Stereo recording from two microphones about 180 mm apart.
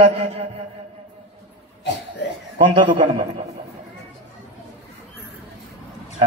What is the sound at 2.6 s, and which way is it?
Speech, 25° right (ahead or behind).